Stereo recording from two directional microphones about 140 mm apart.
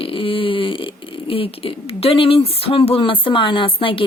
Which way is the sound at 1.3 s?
40° left (ahead or behind).